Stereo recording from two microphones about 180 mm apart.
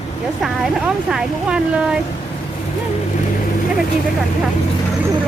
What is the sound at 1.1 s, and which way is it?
Speech, 5° right (ahead or behind).